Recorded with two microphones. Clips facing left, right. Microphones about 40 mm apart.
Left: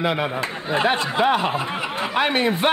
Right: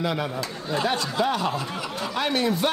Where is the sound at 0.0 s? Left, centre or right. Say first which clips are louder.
Left 4 dB; left.